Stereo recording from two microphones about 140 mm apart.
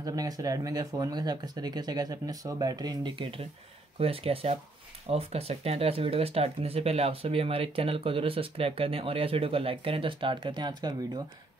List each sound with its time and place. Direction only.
0.0 s speech: 25° right (ahead or behind)